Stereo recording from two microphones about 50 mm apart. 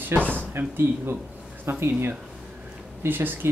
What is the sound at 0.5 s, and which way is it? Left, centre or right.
Speech, right.